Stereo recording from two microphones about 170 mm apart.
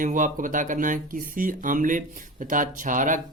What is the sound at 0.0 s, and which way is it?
Speech, 50° right (ahead or behind).